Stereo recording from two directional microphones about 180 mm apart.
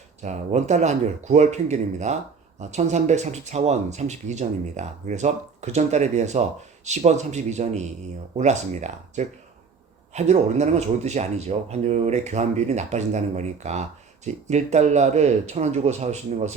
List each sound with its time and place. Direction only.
0.2 s speech: 40° right (ahead or behind)